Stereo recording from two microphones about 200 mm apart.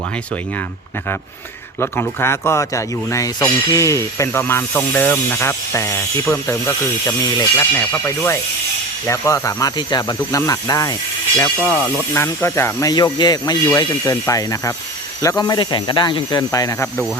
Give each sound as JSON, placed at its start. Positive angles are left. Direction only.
{"t": 1.8, "sound": "speech", "side_deg": 10}